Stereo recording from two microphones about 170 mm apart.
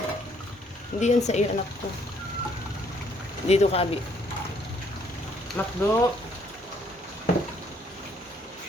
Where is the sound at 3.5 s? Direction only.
40° left (ahead or behind).